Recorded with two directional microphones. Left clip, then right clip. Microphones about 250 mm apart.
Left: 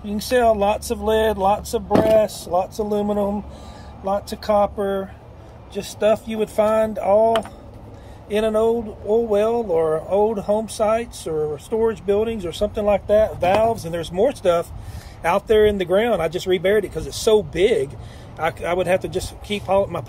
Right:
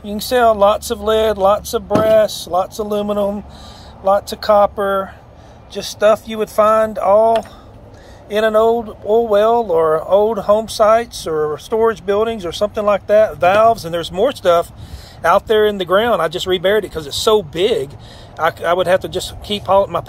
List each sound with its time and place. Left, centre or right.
0.0 s speech: centre